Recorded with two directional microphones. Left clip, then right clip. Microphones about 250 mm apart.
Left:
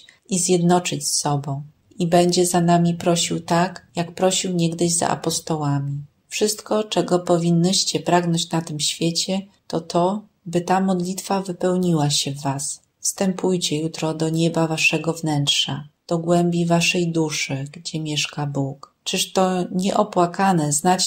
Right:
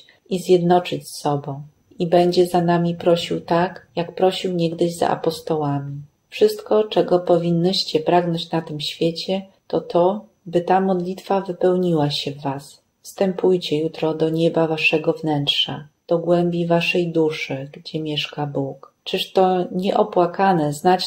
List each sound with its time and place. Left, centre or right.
0.3 s a woman's voice: left